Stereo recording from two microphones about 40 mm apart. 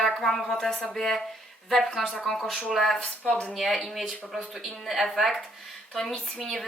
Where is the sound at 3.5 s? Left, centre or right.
Centre.